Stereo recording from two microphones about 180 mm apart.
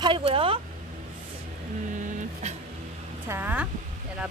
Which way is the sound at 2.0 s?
45° right (ahead or behind).